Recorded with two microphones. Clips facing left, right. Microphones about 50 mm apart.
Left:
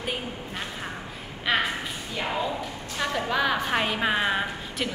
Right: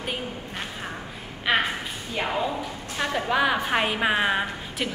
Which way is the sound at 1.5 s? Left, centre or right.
Centre.